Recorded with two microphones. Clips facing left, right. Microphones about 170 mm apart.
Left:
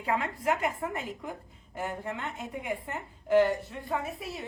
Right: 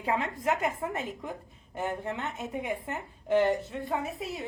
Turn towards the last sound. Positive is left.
turn(degrees=-20)  # may be behind; listen again after turning